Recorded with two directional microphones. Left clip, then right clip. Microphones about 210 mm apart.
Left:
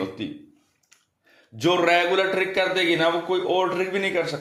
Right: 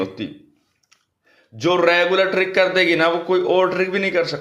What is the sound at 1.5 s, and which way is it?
A man's voice, 15° right (ahead or behind).